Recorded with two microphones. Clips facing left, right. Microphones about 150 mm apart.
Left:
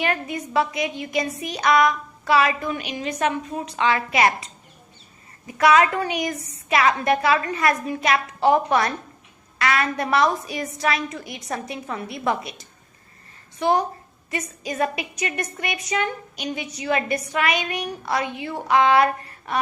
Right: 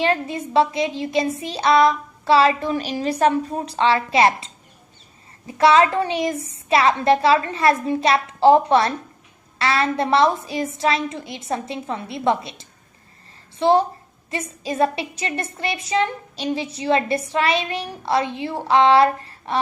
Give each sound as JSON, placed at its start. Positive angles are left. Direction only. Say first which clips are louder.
{"t": 0.0, "sound": "a woman's voice", "louder": "right 4 dB", "side_deg": -30}